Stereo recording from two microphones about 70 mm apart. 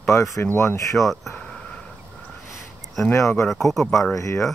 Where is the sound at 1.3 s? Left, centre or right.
Centre.